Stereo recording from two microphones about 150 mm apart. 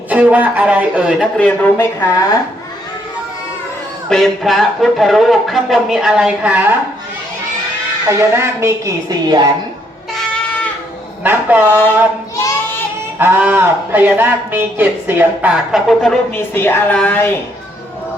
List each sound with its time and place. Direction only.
0.1 s speech: 10° right (ahead or behind)
1.4 s a woman's voice: 10° left (ahead or behind)
4.1 s speech: centre (ahead or behind)
8.0 s a woman's voice: 20° right (ahead or behind)
11.2 s speech: 10° right (ahead or behind)
13.1 s speech: 15° right (ahead or behind)
16.3 s a woman's voice: 15° left (ahead or behind)